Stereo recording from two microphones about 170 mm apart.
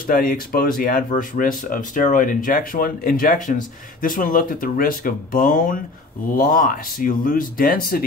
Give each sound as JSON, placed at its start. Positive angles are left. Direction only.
{"t": 0.0, "sound": "speech", "side_deg": 55}